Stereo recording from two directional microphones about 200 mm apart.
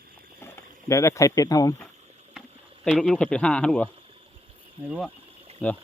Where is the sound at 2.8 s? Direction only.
Centre (ahead or behind).